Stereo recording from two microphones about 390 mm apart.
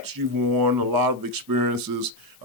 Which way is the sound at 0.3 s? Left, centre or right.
Right.